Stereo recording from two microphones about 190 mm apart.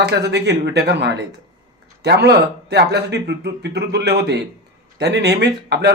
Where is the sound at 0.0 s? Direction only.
60° right (ahead or behind).